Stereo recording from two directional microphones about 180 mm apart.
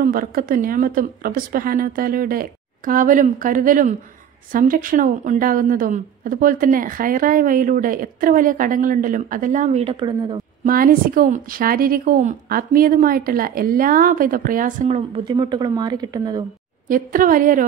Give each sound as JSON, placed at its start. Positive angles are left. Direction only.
{"t": 0.0, "sound": "a woman's voice", "side_deg": -50}
{"t": 10.6, "sound": "a woman's voice", "side_deg": -50}
{"t": 15.1, "sound": "a woman's voice", "side_deg": -25}
{"t": 16.8, "sound": "a woman's voice", "side_deg": -50}